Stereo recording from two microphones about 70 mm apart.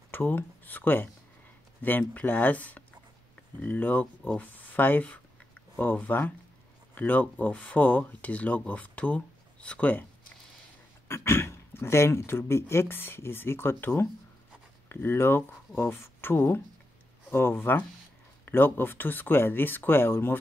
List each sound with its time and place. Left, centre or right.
0.1 s speech: left
11.1 s speech: left